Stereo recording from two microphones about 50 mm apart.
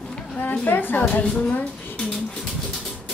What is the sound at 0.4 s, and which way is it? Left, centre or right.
A woman's voice, left.